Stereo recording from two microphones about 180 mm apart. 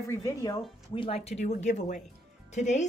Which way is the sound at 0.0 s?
15° left (ahead or behind).